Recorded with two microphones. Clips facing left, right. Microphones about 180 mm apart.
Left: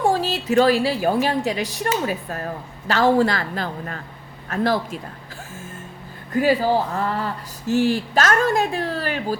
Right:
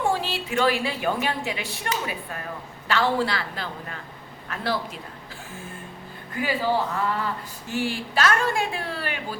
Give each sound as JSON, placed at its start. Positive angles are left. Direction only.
{"t": 0.0, "sound": "a woman's voice", "side_deg": 40}
{"t": 6.3, "sound": "speech", "side_deg": 40}